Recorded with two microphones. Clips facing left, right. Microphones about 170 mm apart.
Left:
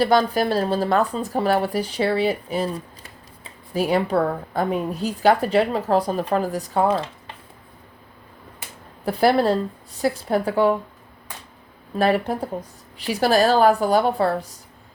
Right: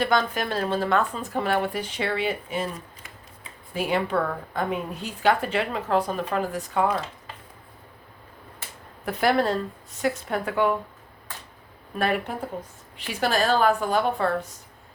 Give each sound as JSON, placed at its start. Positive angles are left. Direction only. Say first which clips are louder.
{"t": 0.0, "sound": "speech", "louder": "left 6 dB", "side_deg": 35}
{"t": 9.0, "sound": "speech", "louder": "left 5 dB", "side_deg": 30}
{"t": 11.9, "sound": "speech", "louder": "left 6 dB", "side_deg": 35}